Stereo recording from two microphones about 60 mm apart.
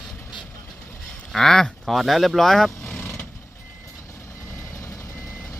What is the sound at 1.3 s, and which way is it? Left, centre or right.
Speech, centre.